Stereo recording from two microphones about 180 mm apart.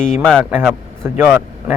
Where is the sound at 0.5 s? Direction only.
10° right (ahead or behind).